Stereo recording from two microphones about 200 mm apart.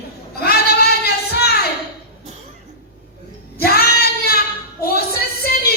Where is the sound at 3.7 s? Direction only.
50° left (ahead or behind).